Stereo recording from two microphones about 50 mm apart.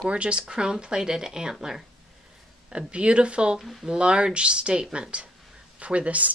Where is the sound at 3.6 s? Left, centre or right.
Centre.